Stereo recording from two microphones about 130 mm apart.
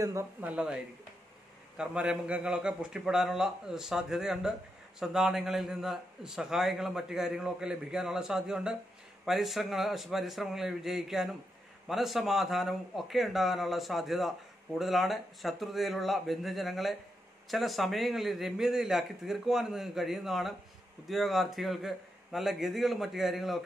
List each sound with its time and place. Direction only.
0.0 s speech: 25° right (ahead or behind)
0.4 s speech: 10° right (ahead or behind)
1.8 s a man's voice: 5° right (ahead or behind)